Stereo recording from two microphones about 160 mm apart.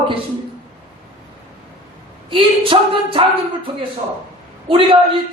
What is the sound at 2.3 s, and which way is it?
Speech, 35° right (ahead or behind).